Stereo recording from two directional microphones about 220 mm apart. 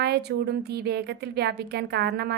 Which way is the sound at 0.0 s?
50° right (ahead or behind).